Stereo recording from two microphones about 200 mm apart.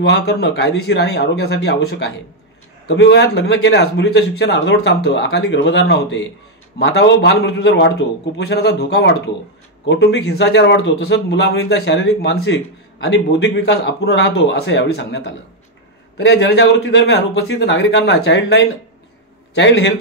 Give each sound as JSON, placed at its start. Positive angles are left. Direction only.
{"t": 0.0, "sound": "a man's voice", "side_deg": 60}